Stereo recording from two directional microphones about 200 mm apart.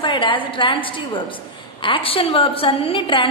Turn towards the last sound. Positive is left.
turn(degrees=25)  # may be behind; listen again after turning